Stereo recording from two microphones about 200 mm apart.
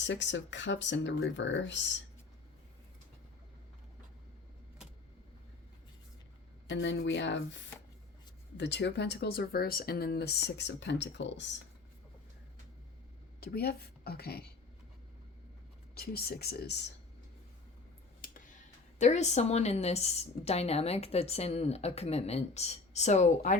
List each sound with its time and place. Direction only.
0.0 s speech: 65° left (ahead or behind)
6.7 s speech: 60° left (ahead or behind)
13.4 s a woman's voice: 50° left (ahead or behind)
16.0 s speech: 50° left (ahead or behind)
18.2 s a sound: 40° left (ahead or behind)
18.9 s a woman's voice: 35° left (ahead or behind)